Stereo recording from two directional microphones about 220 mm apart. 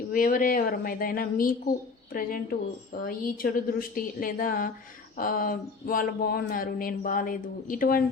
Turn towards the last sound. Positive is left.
turn(degrees=40)  # may be behind; listen again after turning